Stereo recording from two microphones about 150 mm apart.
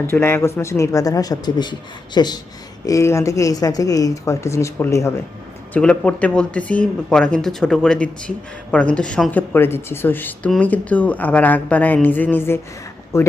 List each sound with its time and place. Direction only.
0.1 s a woman's voice: 10° left (ahead or behind)
5.7 s speech: 5° left (ahead or behind)